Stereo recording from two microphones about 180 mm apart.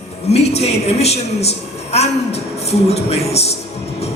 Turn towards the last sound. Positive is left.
turn(degrees=35)  # may be behind; listen again after turning